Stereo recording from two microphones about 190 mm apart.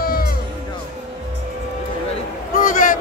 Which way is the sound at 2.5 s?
45° left (ahead or behind).